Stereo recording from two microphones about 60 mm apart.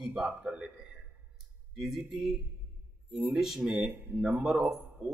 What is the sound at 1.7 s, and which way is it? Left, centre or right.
Speech, centre.